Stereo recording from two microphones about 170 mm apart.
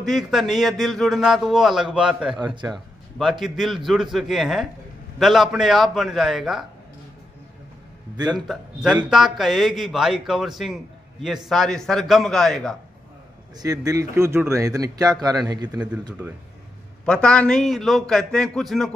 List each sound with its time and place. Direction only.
0.0 s a man's voice: centre (ahead or behind)
2.3 s speech: 25° right (ahead or behind)
2.6 s a man's voice: centre (ahead or behind)
8.5 s a man's voice: 5° right (ahead or behind)
13.6 s speech: 20° right (ahead or behind)
17.0 s a man's voice: 5° left (ahead or behind)